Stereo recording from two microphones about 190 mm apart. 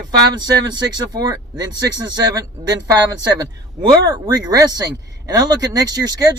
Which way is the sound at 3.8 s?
20° right (ahead or behind).